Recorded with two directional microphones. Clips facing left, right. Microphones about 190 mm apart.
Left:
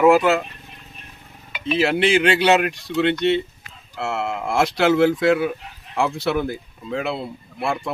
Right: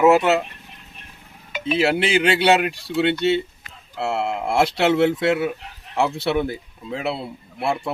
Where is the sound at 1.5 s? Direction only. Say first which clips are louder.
Right 1 dB; 45° right (ahead or behind).